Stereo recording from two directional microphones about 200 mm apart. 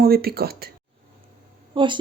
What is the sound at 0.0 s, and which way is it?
Speech, 50° right (ahead or behind).